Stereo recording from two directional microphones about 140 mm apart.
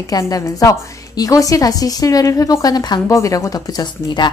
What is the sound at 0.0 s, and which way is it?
A woman's voice, 25° left (ahead or behind).